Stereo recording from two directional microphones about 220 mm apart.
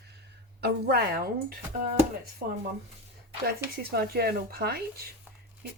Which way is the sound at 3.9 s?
45° right (ahead or behind).